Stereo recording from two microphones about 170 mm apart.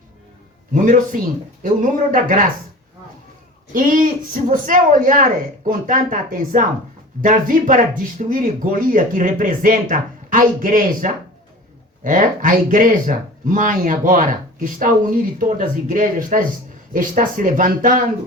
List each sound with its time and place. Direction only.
0.7 s speech: 50° right (ahead or behind)
3.7 s speech: 50° right (ahead or behind)